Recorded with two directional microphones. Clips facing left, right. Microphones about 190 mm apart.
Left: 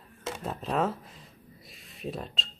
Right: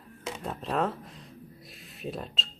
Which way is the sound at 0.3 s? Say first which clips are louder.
Left 1 dB; centre (ahead or behind).